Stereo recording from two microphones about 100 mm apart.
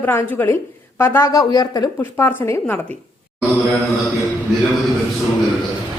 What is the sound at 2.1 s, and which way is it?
Speech, 20° left (ahead or behind).